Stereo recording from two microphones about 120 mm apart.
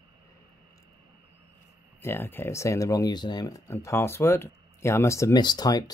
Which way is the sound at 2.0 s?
20° left (ahead or behind).